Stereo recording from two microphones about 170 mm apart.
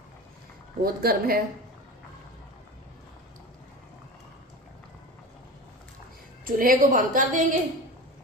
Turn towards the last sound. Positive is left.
turn(degrees=-50)  # may be behind; listen again after turning